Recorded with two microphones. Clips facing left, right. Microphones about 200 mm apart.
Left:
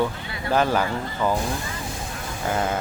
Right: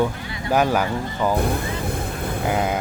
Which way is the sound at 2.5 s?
15° right (ahead or behind).